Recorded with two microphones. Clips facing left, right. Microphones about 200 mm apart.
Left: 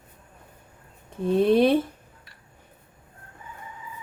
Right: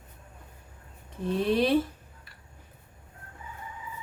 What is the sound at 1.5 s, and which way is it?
Speech, 50° left (ahead or behind).